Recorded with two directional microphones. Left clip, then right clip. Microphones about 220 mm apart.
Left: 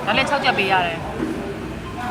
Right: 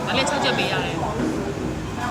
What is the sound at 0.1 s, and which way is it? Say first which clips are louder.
Speech: left 3 dB; 20° left (ahead or behind).